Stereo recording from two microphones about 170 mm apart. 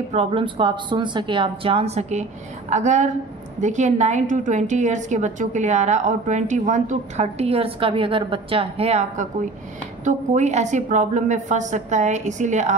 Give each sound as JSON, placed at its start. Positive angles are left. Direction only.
{"t": 0.1, "sound": "a woman's voice", "side_deg": -35}